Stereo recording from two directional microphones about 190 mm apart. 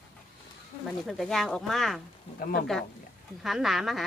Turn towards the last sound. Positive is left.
turn(degrees=0)  # may be behind; listen again after turning